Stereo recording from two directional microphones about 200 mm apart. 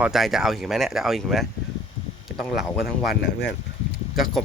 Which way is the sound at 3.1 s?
55° left (ahead or behind).